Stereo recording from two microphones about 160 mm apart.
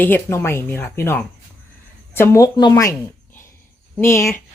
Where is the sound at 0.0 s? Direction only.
15° left (ahead or behind).